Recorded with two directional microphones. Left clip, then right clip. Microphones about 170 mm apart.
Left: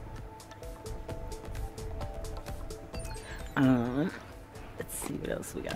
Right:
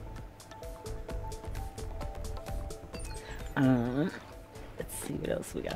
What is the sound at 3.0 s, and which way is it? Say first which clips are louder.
Music: left 2 dB; 20° right (ahead or behind).